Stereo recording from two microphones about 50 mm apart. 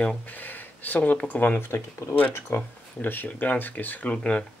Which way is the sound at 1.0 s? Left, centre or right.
Left.